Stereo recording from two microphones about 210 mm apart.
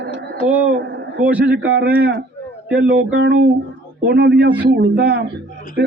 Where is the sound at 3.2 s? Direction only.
45° right (ahead or behind).